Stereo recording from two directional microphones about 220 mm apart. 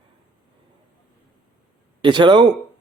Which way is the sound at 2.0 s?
20° right (ahead or behind).